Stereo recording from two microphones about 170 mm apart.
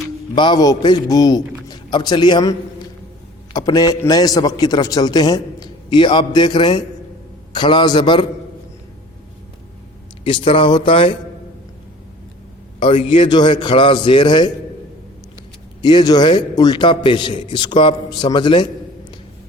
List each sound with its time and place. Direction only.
0.3 s a man's voice: 25° left (ahead or behind)
10.2 s speech: 30° left (ahead or behind)
12.8 s a man's voice: 30° left (ahead or behind)
15.8 s a man's voice: 25° left (ahead or behind)